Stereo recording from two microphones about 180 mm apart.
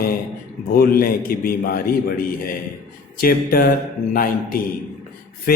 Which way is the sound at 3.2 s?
55° left (ahead or behind).